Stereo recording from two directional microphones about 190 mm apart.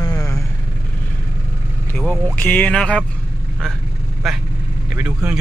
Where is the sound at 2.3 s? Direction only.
10° left (ahead or behind).